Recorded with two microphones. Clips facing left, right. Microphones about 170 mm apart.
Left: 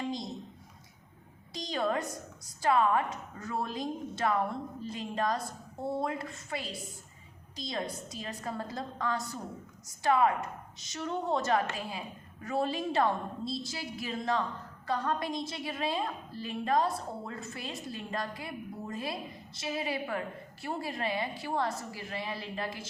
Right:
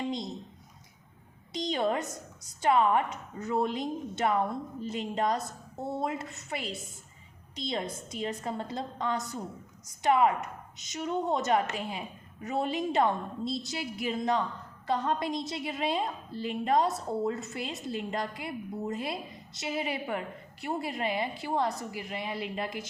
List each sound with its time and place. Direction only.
1.5 s a woman's voice: 25° right (ahead or behind)